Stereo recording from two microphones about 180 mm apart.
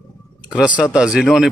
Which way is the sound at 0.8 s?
5° right (ahead or behind).